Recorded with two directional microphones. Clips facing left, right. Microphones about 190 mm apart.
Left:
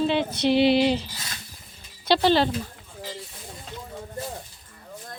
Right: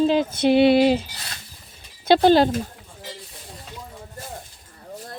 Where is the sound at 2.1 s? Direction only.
45° right (ahead or behind).